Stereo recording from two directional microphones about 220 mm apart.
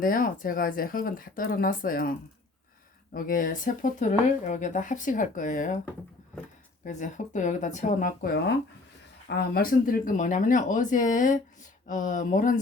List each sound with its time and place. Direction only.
0.0 s speech: 40° left (ahead or behind)
6.8 s speech: 35° left (ahead or behind)